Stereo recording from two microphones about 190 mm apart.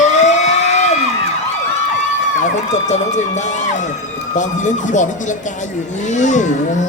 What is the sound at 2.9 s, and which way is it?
Speech, 40° left (ahead or behind).